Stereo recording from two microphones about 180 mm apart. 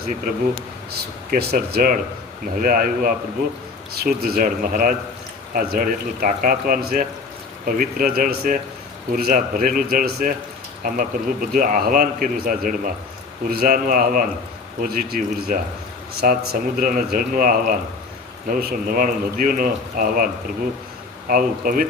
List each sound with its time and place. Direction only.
1.3 s a man's voice: 60° right (ahead or behind)